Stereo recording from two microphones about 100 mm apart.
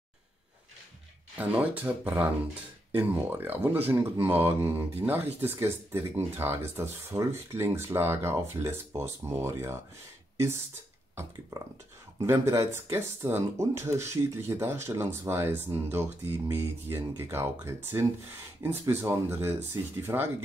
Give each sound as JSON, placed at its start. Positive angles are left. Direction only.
{"t": 1.4, "sound": "speech", "side_deg": -15}
{"t": 3.0, "sound": "speech", "side_deg": -20}
{"t": 12.2, "sound": "speech", "side_deg": -30}